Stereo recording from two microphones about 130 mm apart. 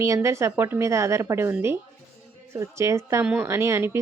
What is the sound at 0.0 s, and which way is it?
A woman's voice, 20° right (ahead or behind).